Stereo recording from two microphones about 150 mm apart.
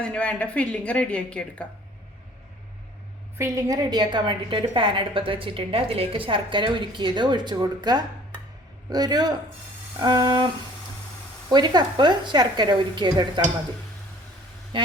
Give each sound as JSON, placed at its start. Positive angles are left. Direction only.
{"t": 0.0, "sound": "a woman's voice", "side_deg": 5}
{"t": 3.3, "sound": "a woman's voice", "side_deg": -20}
{"t": 11.5, "sound": "a woman's voice", "side_deg": -30}